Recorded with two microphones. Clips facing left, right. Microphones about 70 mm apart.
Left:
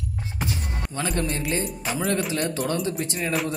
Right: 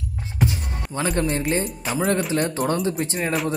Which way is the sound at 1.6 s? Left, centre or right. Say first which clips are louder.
Right 2 dB; centre.